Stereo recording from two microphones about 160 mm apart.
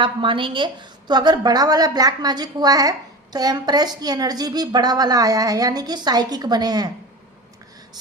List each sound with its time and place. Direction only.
0.0 s a woman's voice: 30° right (ahead or behind)